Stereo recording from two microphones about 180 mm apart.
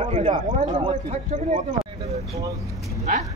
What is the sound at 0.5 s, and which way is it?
Speech, 40° right (ahead or behind).